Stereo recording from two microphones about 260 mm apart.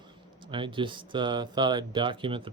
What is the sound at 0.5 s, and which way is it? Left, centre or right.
Speech, centre.